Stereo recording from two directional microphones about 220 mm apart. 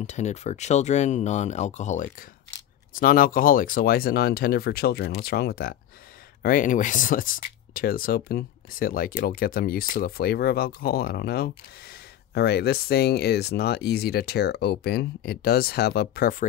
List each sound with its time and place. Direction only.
0.0 s speech: 30° left (ahead or behind)